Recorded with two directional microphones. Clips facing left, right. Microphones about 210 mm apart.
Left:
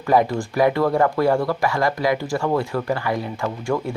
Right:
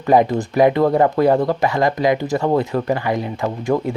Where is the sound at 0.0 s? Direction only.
20° right (ahead or behind).